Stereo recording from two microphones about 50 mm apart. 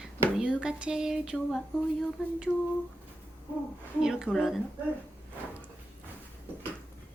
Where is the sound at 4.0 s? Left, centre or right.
Centre.